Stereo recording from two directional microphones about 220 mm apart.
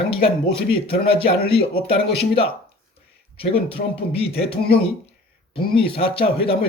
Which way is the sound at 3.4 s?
25° left (ahead or behind).